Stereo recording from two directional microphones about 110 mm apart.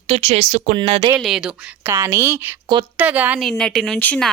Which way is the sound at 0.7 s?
55° right (ahead or behind).